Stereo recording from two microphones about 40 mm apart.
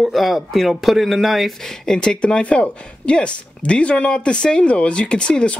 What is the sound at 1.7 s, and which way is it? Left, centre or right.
Speech, centre.